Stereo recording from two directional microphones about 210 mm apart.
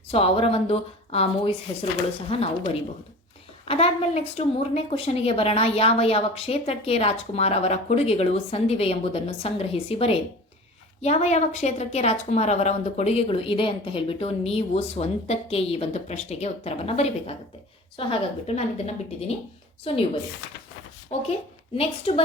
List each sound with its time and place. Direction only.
0.1 s a woman's voice: 25° left (ahead or behind)
3.7 s a woman's voice: 25° left (ahead or behind)
21.1 s a woman's voice: 30° left (ahead or behind)